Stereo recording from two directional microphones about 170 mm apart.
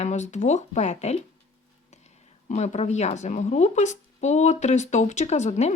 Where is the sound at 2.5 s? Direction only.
40° left (ahead or behind).